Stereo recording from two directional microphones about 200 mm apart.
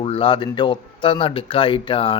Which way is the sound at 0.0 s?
25° left (ahead or behind).